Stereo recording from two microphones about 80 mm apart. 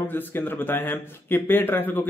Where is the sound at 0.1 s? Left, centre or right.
Left.